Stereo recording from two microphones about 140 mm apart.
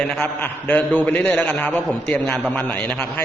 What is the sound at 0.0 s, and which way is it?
A man's voice, 10° left (ahead or behind).